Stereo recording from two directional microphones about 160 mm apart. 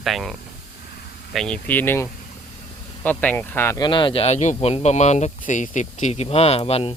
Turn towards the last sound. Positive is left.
turn(degrees=40)  # may be behind; listen again after turning